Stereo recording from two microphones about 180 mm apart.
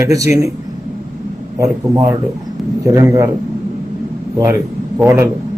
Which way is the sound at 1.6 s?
15° right (ahead or behind).